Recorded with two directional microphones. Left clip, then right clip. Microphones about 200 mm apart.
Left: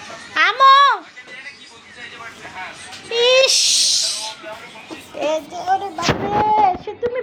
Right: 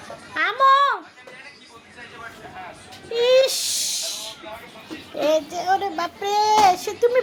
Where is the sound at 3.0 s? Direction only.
10° right (ahead or behind).